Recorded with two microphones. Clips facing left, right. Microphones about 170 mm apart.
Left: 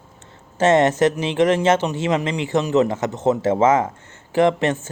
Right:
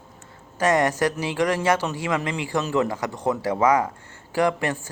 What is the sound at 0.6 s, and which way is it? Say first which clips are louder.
A man's voice: left 5 dB; 25° left (ahead or behind).